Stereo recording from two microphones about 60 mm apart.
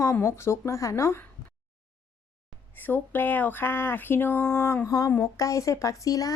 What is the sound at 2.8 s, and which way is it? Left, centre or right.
Speech, left.